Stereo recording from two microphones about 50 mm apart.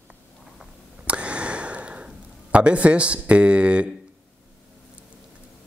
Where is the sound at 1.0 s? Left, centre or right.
Right.